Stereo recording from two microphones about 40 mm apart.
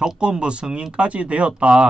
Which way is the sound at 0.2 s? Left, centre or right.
Right.